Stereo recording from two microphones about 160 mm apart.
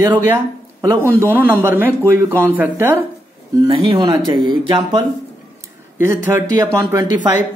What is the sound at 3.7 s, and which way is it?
Speech, 35° right (ahead or behind).